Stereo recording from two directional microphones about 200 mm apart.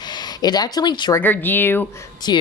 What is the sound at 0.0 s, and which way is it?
Speech, 20° left (ahead or behind).